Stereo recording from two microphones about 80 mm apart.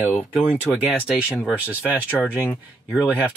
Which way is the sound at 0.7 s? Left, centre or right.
Centre.